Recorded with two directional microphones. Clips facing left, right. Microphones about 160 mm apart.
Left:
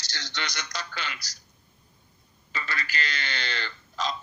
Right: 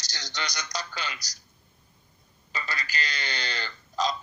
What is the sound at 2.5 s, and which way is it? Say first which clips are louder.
Speech: left 1 dB; 40° right (ahead or behind).